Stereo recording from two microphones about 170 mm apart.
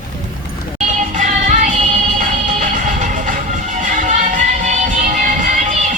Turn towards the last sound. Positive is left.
turn(degrees=-45)  # may be behind; listen again after turning